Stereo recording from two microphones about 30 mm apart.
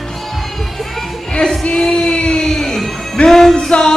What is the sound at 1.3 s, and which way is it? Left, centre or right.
Music, left.